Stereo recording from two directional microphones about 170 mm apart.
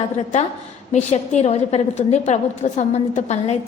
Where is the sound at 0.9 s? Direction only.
40° left (ahead or behind).